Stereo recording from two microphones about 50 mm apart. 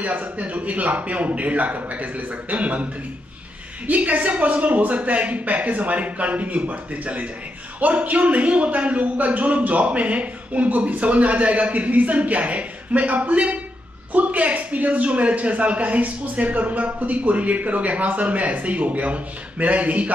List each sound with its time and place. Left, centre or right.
0.0 s a man's voice: right